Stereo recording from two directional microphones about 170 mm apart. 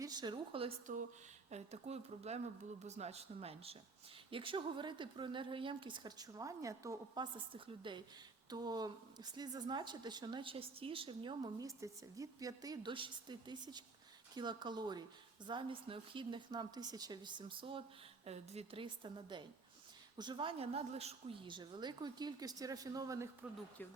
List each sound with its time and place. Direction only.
0.0 s speech: 25° right (ahead or behind)
1.5 s a woman's voice: 40° right (ahead or behind); by 7.3 s 20° right (ahead or behind)
7.3 s a woman's voice: 30° right (ahead or behind)